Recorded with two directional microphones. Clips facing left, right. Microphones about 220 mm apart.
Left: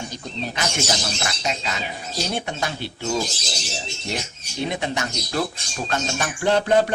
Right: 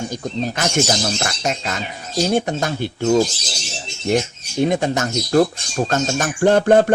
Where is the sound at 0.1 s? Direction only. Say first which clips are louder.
Right 7 dB; 45° right (ahead or behind).